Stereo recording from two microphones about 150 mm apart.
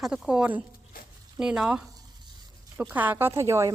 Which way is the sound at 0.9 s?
70° left (ahead or behind).